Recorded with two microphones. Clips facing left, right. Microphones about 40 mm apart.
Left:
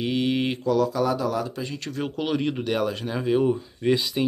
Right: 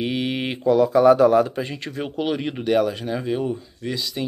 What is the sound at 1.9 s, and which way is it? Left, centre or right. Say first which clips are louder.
Speech: even; centre.